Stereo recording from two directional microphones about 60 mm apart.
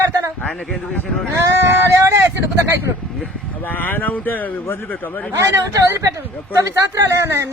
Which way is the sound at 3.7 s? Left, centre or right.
Left.